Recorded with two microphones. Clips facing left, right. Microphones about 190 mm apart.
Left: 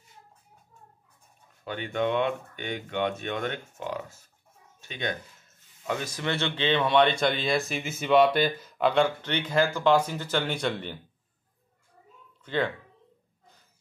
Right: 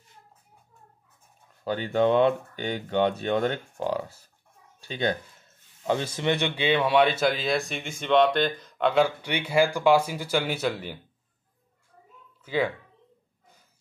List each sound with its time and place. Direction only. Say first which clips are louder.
1.6 s speech: right 5 dB; 35° right (ahead or behind)
4.7 s a sound: right 6 dB; 35° right (ahead or behind)
5.9 s speech: right 5 dB; 30° right (ahead or behind); by 11.0 s 5° right (ahead or behind)
12.4 s speech: right 2 dB; 5° right (ahead or behind)